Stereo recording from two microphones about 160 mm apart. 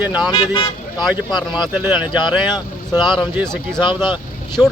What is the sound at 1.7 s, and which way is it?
Speech, 10° right (ahead or behind).